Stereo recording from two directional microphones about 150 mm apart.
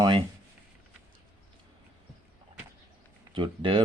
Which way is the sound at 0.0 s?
30° right (ahead or behind).